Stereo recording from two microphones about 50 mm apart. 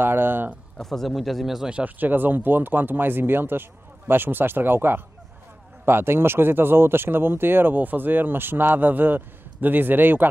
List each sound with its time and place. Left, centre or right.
0.0 s speech: right
0.8 s speech: centre
2.0 s speech: right